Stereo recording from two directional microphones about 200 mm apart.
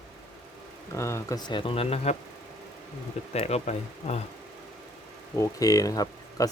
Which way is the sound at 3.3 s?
30° left (ahead or behind).